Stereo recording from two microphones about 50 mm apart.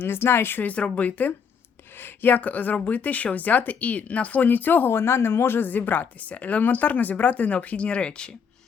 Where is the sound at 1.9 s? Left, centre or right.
Left; by 8.4 s centre.